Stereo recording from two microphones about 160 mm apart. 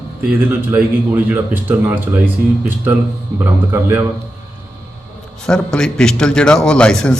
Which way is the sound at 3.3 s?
15° right (ahead or behind).